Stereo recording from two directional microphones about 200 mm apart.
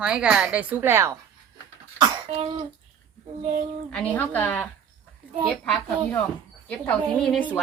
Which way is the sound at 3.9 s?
5° left (ahead or behind).